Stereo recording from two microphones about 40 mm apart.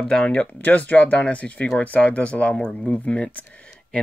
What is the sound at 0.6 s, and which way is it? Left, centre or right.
Speech, left.